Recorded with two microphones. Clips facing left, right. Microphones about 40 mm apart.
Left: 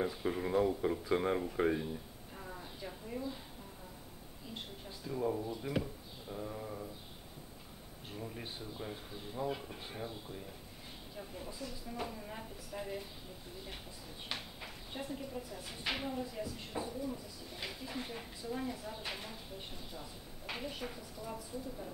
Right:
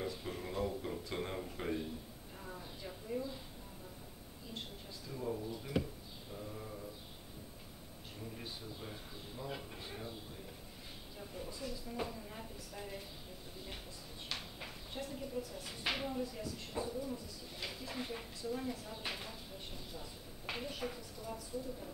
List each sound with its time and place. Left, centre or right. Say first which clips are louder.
0.0 s speech: left 6 dB; left
1.0 s a sound: left 8 dB; left; by 3.3 s centre
5.0 s speech: left 5 dB; centre
6.3 s a sound: left 5 dB; centre
8.2 s speech: left 3 dB; centre
11.1 s speech: left 1 dB; centre
14.3 s a sound: left 1 dB; centre
14.9 s a woman's voice: left 2 dB; centre
20.4 s speech: even; centre